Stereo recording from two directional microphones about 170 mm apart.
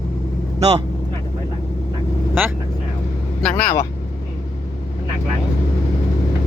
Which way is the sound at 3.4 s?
5° left (ahead or behind).